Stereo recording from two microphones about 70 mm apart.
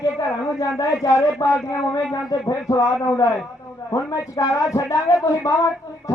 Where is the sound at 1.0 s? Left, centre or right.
Left.